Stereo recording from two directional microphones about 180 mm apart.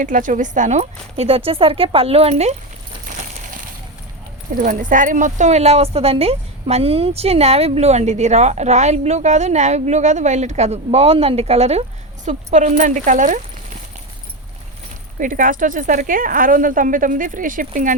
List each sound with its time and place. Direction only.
0.0 s a woman's voice: 45° right (ahead or behind)
3.1 s a sound: 45° right (ahead or behind)
4.5 s speech: 45° right (ahead or behind)
15.2 s a woman's voice: 50° right (ahead or behind)